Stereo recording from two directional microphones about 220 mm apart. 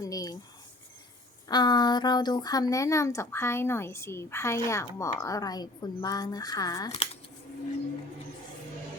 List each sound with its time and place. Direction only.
0.0 s speech: 15° left (ahead or behind)
1.5 s speech: 20° left (ahead or behind)
6.9 s speech: 30° left (ahead or behind)